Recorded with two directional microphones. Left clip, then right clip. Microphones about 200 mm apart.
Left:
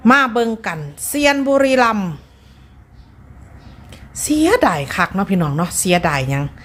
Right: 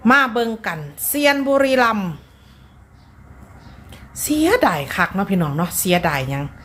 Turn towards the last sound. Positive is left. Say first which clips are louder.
# left 2 dB
turn(degrees=20)  # may be behind; listen again after turning